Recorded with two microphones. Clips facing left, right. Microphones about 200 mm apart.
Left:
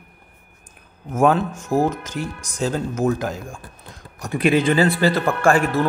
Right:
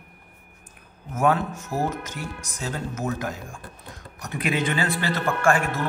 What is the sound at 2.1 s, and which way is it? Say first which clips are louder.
Speech: left 6 dB; 90° left.